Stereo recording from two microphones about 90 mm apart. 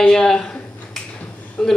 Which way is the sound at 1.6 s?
5° left (ahead or behind).